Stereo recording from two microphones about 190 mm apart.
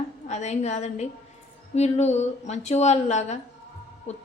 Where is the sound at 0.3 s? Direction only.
35° left (ahead or behind).